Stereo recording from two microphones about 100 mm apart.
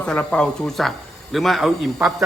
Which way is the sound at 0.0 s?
10° left (ahead or behind).